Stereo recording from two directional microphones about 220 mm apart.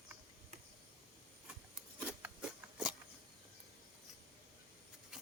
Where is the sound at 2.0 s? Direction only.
5° right (ahead or behind).